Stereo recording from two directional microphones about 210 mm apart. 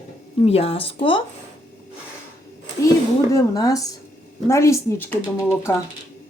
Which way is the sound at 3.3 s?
15° left (ahead or behind).